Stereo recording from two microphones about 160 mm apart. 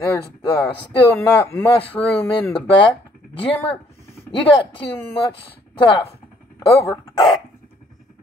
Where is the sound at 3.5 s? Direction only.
10° left (ahead or behind).